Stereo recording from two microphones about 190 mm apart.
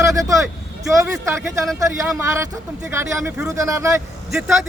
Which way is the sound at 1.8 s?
15° right (ahead or behind).